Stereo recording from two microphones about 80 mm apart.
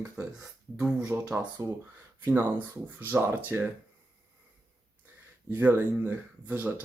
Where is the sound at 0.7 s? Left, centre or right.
Centre.